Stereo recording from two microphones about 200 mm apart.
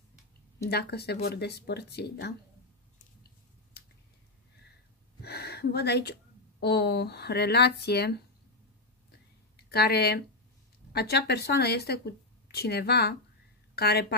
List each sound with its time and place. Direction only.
0.7 s a woman's voice: 55° left (ahead or behind)
5.2 s speech: 55° left (ahead or behind)
9.7 s a woman's voice: 55° left (ahead or behind)